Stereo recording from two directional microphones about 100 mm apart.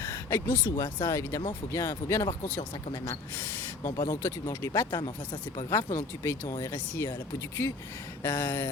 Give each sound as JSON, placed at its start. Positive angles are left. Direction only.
{"t": 0.0, "sound": "speech", "side_deg": 25}